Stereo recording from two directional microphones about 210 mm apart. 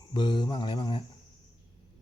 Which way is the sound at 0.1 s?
20° left (ahead or behind).